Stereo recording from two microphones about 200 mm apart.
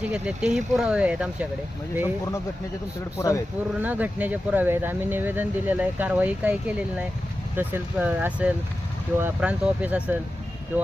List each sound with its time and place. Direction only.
0.0 s speech: 5° right (ahead or behind)
3.2 s speech: 15° left (ahead or behind)
3.8 s speech: 10° right (ahead or behind)